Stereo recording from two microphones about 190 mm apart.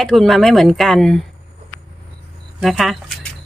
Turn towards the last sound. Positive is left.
turn(degrees=0)  # may be behind; listen again after turning